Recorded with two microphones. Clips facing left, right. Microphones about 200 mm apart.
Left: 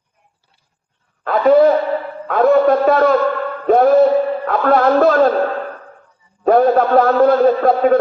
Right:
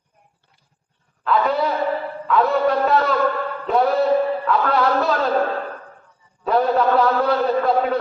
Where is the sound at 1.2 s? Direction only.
50° left (ahead or behind).